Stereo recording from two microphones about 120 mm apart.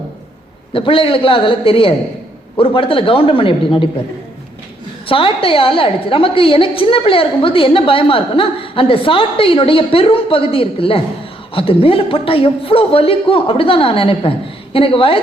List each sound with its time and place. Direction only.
0.7 s a woman's voice: 50° left (ahead or behind)
5.0 s a woman's voice: 50° left (ahead or behind)